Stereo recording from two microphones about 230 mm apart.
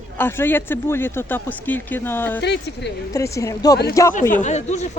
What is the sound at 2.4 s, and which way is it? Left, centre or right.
Speech, left.